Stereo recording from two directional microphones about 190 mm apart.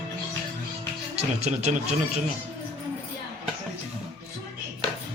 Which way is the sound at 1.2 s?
35° right (ahead or behind).